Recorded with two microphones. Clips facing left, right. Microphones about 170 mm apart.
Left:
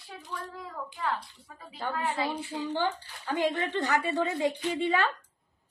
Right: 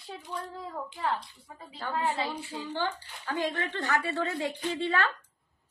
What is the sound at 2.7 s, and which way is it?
A woman's voice, 15° left (ahead or behind).